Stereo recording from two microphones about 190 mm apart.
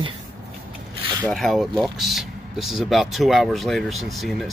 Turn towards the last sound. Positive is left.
turn(degrees=0)  # may be behind; listen again after turning